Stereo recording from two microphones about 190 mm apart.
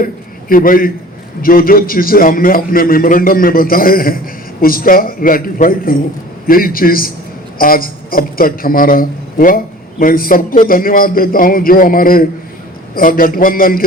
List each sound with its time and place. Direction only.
0.0 s a man's voice: 50° left (ahead or behind)